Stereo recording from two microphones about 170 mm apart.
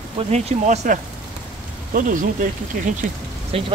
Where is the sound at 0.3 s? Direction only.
45° right (ahead or behind).